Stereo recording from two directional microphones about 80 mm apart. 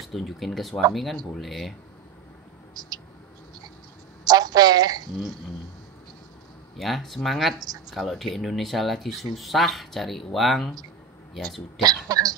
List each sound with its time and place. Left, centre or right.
0.0 s speech: centre
2.7 s a sound: right
4.2 s a woman's voice: right
6.8 s speech: centre
11.8 s speech: right